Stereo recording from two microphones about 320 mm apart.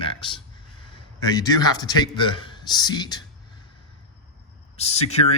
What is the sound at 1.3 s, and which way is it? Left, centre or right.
A man's voice, centre.